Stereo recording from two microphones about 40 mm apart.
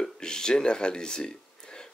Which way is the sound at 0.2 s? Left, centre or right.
Centre.